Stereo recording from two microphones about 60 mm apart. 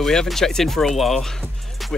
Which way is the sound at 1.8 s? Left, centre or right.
Centre.